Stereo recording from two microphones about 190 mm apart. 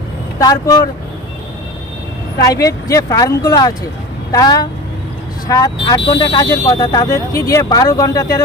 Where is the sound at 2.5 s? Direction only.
20° left (ahead or behind).